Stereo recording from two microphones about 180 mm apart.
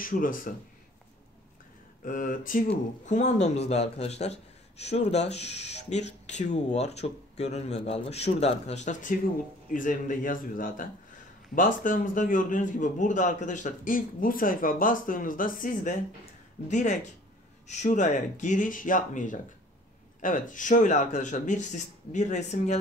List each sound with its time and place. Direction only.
0.0 s a man's voice: 50° left (ahead or behind)
2.0 s a man's voice: 50° left (ahead or behind)